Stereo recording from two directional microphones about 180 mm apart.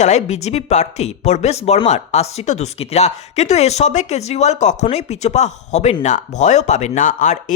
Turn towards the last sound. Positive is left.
turn(degrees=45)  # may be behind; listen again after turning